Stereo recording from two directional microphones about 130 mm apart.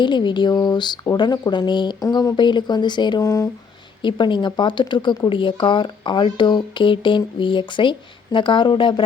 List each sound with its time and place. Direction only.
0.0 s speech: 35° left (ahead or behind)
4.0 s speech: 35° left (ahead or behind)